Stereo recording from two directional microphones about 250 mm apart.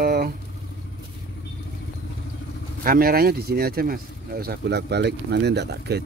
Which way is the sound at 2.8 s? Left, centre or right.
Right.